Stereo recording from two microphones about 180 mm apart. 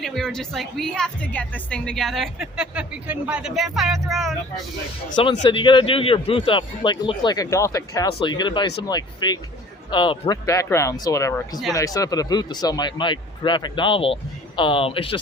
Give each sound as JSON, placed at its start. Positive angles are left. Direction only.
{"t": 0.0, "sound": "a woman's voice", "side_deg": 0}
{"t": 5.4, "sound": "a man's voice", "side_deg": 25}